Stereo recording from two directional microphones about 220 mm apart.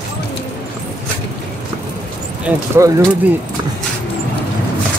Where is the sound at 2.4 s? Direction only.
10° right (ahead or behind).